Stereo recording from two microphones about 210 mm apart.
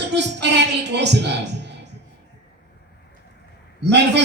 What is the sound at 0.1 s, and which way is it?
Music, 55° right (ahead or behind).